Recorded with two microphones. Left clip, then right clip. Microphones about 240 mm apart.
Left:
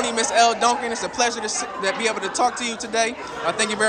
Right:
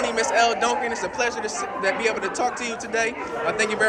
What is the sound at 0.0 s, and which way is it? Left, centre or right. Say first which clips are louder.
Speech: left 2 dB; left.